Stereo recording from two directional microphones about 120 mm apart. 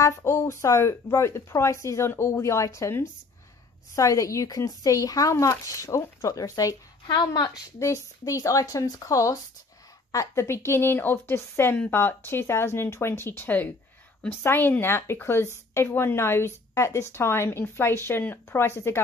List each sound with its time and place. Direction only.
0.0 s speech: 25° left (ahead or behind)